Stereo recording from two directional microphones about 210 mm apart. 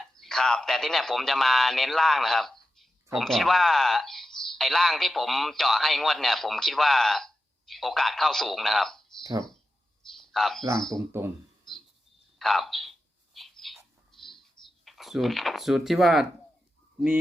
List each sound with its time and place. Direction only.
0.2 s speech: centre (ahead or behind)
9.2 s speech: 20° right (ahead or behind)
10.2 s a sound: centre (ahead or behind)
10.9 s speech: 10° right (ahead or behind)
12.4 s bird: centre (ahead or behind)
14.8 s speech: centre (ahead or behind)